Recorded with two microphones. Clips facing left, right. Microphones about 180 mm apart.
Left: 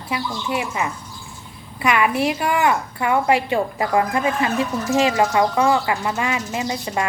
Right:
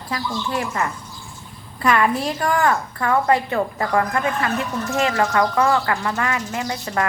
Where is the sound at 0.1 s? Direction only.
15° left (ahead or behind).